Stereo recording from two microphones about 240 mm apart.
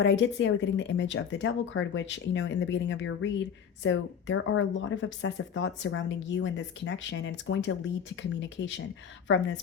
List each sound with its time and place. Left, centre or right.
0.0 s speech: left